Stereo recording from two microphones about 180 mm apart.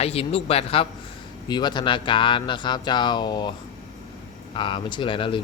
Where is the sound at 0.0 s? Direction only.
35° left (ahead or behind).